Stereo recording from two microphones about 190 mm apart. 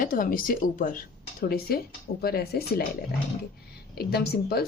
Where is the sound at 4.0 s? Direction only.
55° left (ahead or behind).